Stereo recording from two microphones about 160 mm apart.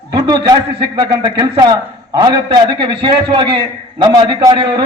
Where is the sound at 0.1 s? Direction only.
25° right (ahead or behind).